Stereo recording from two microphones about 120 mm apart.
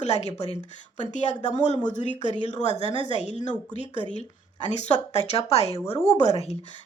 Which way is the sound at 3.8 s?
45° right (ahead or behind).